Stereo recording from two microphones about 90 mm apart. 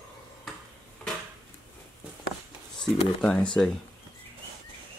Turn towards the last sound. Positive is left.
turn(degrees=10)  # may be behind; listen again after turning